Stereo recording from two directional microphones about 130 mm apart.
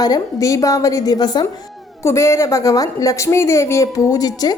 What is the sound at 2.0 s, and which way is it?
A woman's voice, 20° left (ahead or behind).